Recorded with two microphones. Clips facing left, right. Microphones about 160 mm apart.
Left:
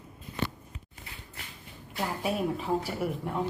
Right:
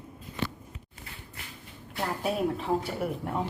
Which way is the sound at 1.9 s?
Centre (ahead or behind).